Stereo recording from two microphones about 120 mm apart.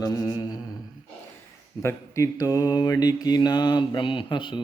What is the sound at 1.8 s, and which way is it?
Mantra, 25° left (ahead or behind).